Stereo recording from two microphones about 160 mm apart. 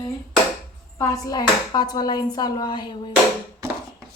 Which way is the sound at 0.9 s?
20° left (ahead or behind).